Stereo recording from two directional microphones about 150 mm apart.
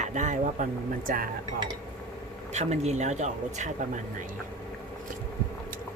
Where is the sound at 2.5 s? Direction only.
45° right (ahead or behind).